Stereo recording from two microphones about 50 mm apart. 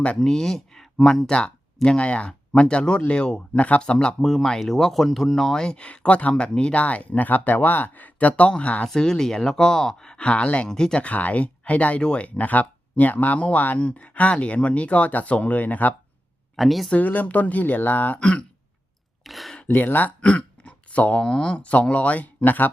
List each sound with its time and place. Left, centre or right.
0.2 s speech: centre
4.2 s speech: centre; by 8.9 s left
8.9 s speech: centre
11.0 s speech: left
16.6 s speech: centre
16.9 s speech: left
18.2 s speech: centre
19.2 s speech: centre
19.6 s speech: left
20.2 s a sound: left
21.2 s speech: centre; by 22.7 s left